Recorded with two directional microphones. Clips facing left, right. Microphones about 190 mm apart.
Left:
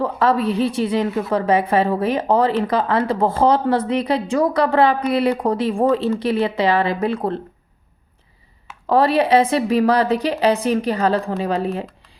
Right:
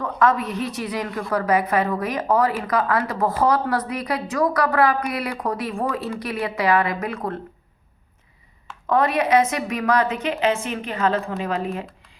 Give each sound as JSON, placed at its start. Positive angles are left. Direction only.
{"t": 0.0, "sound": "speech", "side_deg": 30}
{"t": 8.9, "sound": "a woman's voice", "side_deg": 30}